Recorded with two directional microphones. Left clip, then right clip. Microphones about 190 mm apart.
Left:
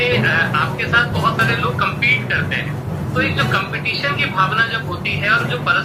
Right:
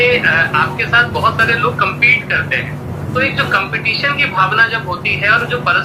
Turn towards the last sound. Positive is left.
turn(degrees=-50)  # may be behind; listen again after turning